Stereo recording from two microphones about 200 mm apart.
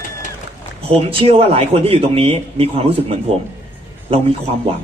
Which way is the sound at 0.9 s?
25° right (ahead or behind).